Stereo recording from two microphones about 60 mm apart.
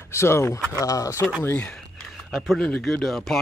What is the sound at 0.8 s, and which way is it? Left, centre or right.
Speech, left.